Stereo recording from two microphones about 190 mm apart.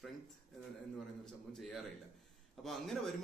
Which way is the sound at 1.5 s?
Centre (ahead or behind).